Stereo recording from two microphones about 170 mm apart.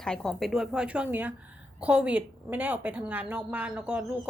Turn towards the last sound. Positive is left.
turn(degrees=-5)  # may be behind; listen again after turning